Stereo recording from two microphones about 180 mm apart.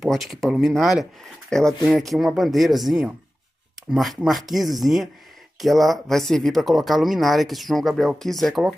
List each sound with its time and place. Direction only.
0.0 s speech: centre (ahead or behind)